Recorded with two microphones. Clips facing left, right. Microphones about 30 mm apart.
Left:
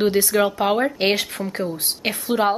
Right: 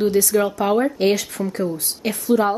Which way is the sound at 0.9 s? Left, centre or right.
Left.